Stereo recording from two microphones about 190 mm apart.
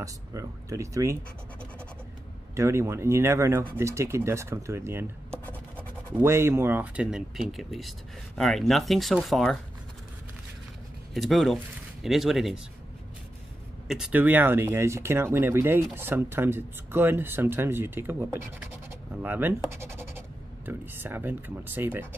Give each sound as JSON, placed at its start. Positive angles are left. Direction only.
{"t": 0.0, "sound": "speech", "side_deg": -15}
{"t": 2.5, "sound": "speech", "side_deg": -15}
{"t": 5.3, "sound": "scratch", "side_deg": 10}
{"t": 6.1, "sound": "speech", "side_deg": -15}
{"t": 11.1, "sound": "speech", "side_deg": 0}
{"t": 13.8, "sound": "speech", "side_deg": -5}